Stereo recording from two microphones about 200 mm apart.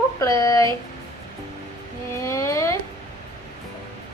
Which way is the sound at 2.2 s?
15° left (ahead or behind).